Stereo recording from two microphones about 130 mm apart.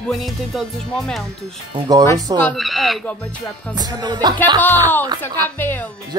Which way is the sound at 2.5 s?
Centre (ahead or behind).